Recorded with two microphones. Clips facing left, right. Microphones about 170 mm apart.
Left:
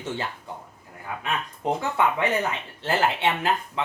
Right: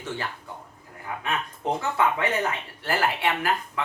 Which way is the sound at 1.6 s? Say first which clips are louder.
Left 1 dB; 20° left (ahead or behind).